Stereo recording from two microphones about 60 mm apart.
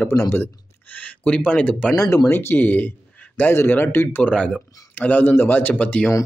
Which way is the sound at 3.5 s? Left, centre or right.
Left.